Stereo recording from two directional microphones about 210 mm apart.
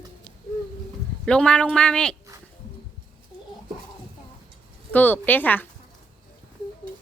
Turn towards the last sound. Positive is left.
turn(degrees=10)  # may be behind; listen again after turning